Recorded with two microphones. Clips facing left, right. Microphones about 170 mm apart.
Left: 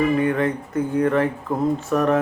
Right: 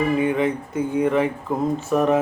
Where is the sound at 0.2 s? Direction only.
5° right (ahead or behind).